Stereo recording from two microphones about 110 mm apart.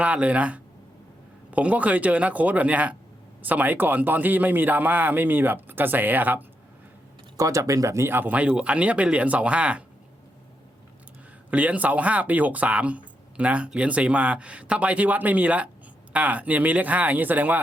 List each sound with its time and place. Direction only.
0.0 s speech: 10° right (ahead or behind)
7.3 s speech: 30° right (ahead or behind); by 9.8 s 10° right (ahead or behind)
11.5 s speech: 10° right (ahead or behind)